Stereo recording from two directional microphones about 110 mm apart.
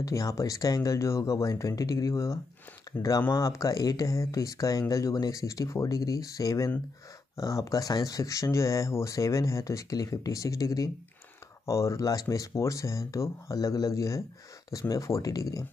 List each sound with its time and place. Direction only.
0.0 s speech: 30° left (ahead or behind)